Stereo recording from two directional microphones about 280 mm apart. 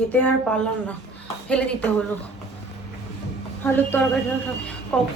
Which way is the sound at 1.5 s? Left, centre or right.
Centre.